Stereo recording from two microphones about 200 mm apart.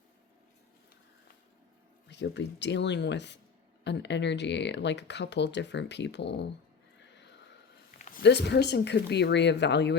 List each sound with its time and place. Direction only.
2.0 s speech: 60° left (ahead or behind)
7.9 s a sound: 40° left (ahead or behind)
8.2 s speech: 60° left (ahead or behind)